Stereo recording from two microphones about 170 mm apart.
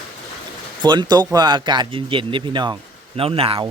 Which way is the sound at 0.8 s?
25° right (ahead or behind).